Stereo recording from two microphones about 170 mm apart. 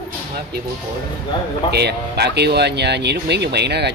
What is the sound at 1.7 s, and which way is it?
Speech, 75° right (ahead or behind).